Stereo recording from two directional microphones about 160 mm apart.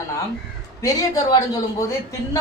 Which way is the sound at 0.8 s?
20° left (ahead or behind).